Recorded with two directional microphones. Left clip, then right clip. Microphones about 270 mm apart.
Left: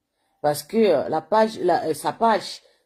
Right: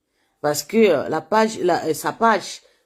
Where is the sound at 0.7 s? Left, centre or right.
Right.